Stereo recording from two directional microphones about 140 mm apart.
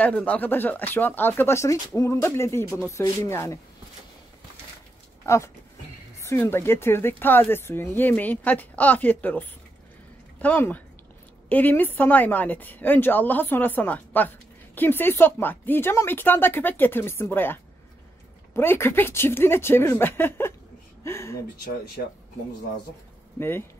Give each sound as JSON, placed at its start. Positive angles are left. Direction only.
{"t": 0.0, "sound": "speech", "side_deg": 10}
{"t": 5.2, "sound": "speech", "side_deg": 20}
{"t": 10.4, "sound": "speech", "side_deg": 10}